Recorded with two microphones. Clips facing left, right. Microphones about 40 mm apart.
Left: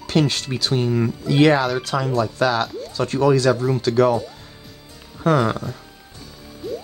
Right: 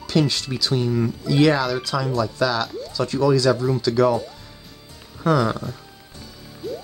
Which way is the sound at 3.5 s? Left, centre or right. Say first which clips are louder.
Left 1 dB; left.